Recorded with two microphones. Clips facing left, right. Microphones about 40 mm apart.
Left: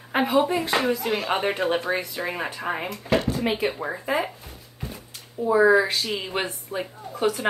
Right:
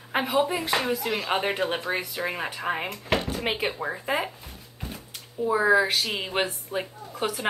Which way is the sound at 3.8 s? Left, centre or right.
Centre.